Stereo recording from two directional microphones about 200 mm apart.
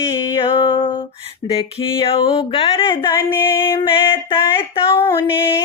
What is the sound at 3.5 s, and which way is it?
Female singing, 25° left (ahead or behind).